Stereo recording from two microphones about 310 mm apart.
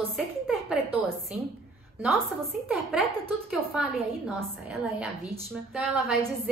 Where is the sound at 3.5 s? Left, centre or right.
Centre.